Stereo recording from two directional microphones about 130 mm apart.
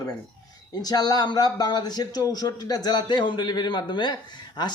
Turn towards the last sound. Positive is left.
turn(degrees=35)  # may be behind; listen again after turning